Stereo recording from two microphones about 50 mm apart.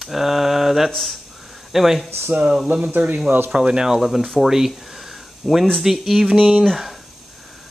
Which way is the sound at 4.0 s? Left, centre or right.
Centre.